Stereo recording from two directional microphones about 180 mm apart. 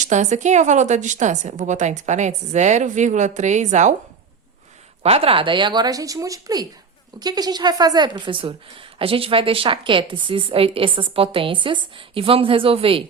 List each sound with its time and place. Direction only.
0.0 s a woman's voice: 40° right (ahead or behind)
5.0 s a woman's voice: 30° right (ahead or behind)